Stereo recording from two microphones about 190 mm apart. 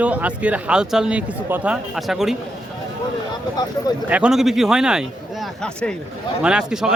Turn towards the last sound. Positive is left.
turn(degrees=-5)  # may be behind; listen again after turning